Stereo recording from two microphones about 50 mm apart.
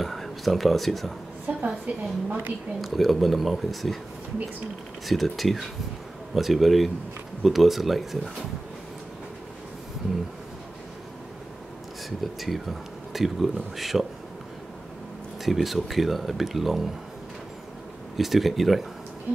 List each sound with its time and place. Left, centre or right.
0.0 s a sound: centre
1.5 s a sound: right
1.9 s a woman's voice: right
2.8 s speech: centre
5.0 s speech: centre
12.2 s speech: centre
15.4 s speech: centre
18.1 s speech: centre